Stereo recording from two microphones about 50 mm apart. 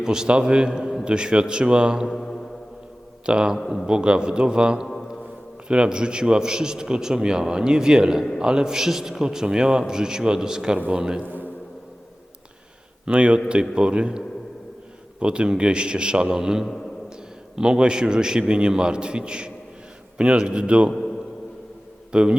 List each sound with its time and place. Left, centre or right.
0.0 s a man's voice: centre
2.0 s speech: centre
3.2 s a man's voice: centre
4.9 s a sound: centre
5.6 s a man's voice: centre
13.1 s a man's voice: right
15.2 s a man's voice: centre
22.1 s a man's voice: centre